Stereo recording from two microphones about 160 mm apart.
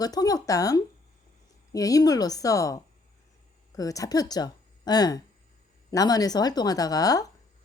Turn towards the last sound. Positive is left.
turn(degrees=20)  # may be behind; listen again after turning